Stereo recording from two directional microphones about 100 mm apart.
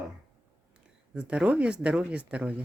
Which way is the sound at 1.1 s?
10° right (ahead or behind).